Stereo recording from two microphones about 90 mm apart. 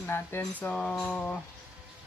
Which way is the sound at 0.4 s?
15° left (ahead or behind).